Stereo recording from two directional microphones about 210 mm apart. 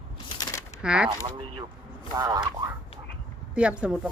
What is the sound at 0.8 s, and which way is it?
Speech, 5° right (ahead or behind).